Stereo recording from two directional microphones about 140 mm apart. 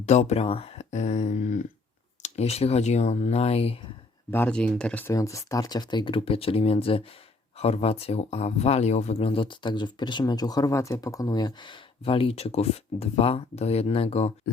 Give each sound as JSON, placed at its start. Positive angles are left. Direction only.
{"t": 0.0, "sound": "speech", "side_deg": 55}
{"t": 4.3, "sound": "speech", "side_deg": 10}
{"t": 5.0, "sound": "speech", "side_deg": 20}